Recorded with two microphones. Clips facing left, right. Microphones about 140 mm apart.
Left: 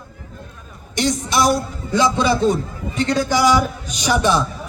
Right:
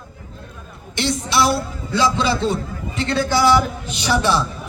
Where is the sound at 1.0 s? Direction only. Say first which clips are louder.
Left 1 dB; 45° left (ahead or behind).